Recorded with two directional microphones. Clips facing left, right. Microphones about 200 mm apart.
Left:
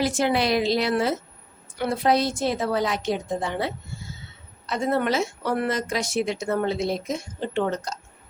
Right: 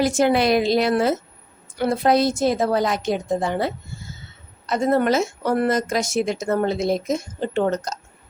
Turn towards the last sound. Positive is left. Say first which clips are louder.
# right 4 dB
turn(degrees=-45)  # may be behind; listen again after turning